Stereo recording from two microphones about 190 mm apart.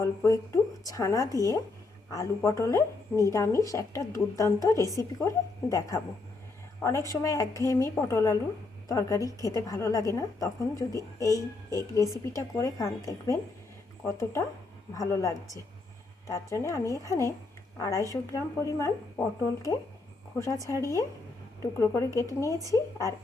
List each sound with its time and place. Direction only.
0.0 s a woman's voice: 15° left (ahead or behind)
7.1 s a woman's voice: 15° left (ahead or behind)
20.7 s a woman's voice: 15° left (ahead or behind)